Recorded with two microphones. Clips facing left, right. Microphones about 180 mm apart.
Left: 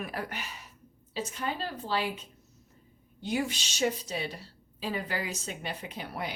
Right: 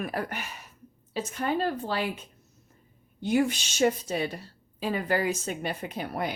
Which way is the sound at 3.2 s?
55° right (ahead or behind).